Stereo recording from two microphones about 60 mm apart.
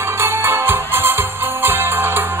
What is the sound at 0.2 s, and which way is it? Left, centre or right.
Music, right.